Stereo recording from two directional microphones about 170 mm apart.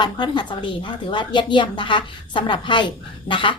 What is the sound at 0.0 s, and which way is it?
Speech, 25° left (ahead or behind).